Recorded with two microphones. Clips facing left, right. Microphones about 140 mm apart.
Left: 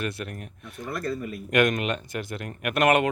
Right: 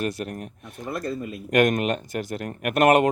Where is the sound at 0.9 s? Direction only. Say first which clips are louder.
Right 1 dB; 20° right (ahead or behind).